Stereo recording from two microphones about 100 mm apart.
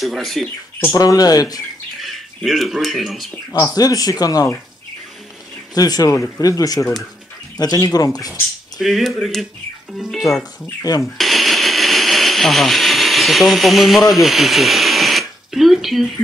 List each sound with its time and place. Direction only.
0.0 s speech: centre (ahead or behind)
0.9 s speech: 35° left (ahead or behind)
2.0 s speech: centre (ahead or behind)
3.5 s speech: 40° left (ahead or behind)
5.8 s speech: 40° left (ahead or behind)
8.7 s speech: centre (ahead or behind)
10.3 s speech: 30° left (ahead or behind)
11.1 s a sound: centre (ahead or behind)
14.1 s speech: centre (ahead or behind)